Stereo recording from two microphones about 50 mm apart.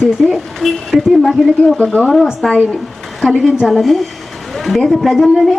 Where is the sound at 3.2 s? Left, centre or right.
Centre.